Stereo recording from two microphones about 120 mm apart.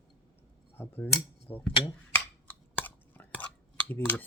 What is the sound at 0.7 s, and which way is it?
Cutlery, 15° left (ahead or behind).